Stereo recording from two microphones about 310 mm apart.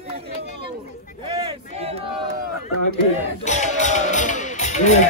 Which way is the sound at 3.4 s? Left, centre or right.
Left.